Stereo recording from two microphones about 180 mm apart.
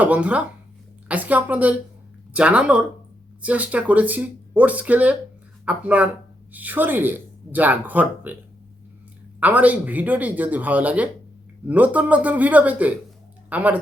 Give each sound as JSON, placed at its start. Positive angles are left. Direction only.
{"t": 0.0, "sound": "speech", "side_deg": -5}
{"t": 9.4, "sound": "speech", "side_deg": -10}